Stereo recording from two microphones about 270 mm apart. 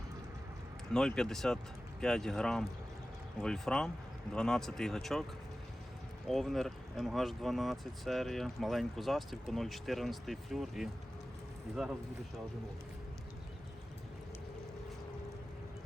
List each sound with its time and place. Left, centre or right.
0.9 s speech: centre
6.2 s speech: centre